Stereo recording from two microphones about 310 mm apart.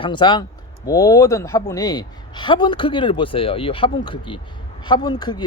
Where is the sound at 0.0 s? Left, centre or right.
Centre.